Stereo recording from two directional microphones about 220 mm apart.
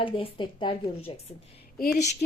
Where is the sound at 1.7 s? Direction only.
45° left (ahead or behind).